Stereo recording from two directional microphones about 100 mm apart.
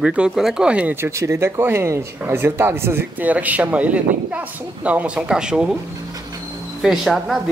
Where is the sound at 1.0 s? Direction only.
30° right (ahead or behind); by 5.8 s 10° right (ahead or behind).